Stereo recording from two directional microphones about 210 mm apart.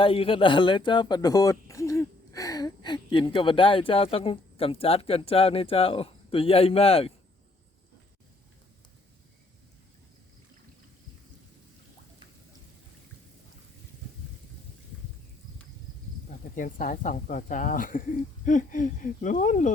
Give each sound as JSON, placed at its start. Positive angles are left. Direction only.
{"t": 0.0, "sound": "speech", "side_deg": 25}
{"t": 16.6, "sound": "speech", "side_deg": 40}